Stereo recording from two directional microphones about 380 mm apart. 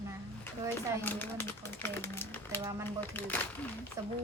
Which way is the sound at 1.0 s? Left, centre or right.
Centre.